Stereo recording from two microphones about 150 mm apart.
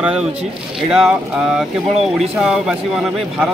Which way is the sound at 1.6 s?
Centre (ahead or behind).